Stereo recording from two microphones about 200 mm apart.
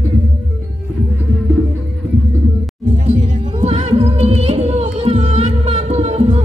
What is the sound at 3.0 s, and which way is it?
Music, 35° right (ahead or behind).